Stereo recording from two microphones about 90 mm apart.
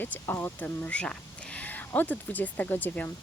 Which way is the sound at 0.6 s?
15° left (ahead or behind).